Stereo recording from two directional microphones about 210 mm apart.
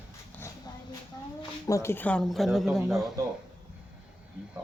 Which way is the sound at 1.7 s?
10° left (ahead or behind).